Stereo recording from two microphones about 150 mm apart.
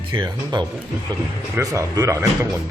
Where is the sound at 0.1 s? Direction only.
30° right (ahead or behind).